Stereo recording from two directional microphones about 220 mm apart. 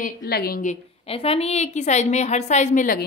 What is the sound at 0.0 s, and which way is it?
A woman's voice, 45° left (ahead or behind).